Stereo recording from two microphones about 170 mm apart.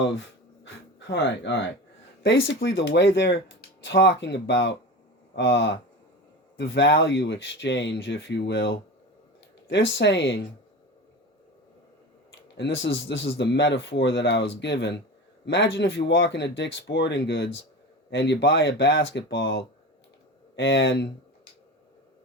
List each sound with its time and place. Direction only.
0.2 s a sound: 90° left
2.5 s speech: 90° left
12.5 s speech: 90° left